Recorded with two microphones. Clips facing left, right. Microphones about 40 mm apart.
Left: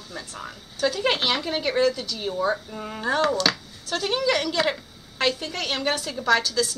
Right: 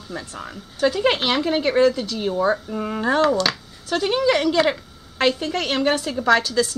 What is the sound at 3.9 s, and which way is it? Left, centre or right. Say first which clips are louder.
A woman's voice: right 4 dB; centre.